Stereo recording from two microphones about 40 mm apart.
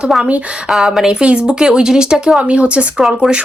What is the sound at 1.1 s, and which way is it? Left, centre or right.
Speech, right.